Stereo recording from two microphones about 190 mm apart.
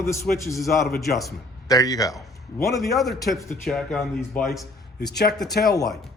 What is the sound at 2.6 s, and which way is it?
Speech, centre (ahead or behind).